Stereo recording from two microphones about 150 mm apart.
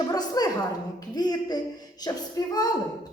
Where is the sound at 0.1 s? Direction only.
25° left (ahead or behind).